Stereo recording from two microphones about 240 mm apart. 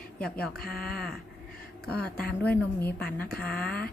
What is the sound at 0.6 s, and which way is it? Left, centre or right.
Speech, left.